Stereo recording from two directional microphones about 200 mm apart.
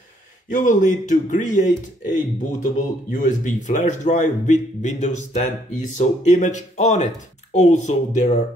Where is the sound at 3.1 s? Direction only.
40° left (ahead or behind).